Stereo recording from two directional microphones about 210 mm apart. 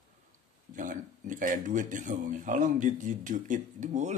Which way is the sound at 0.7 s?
40° right (ahead or behind).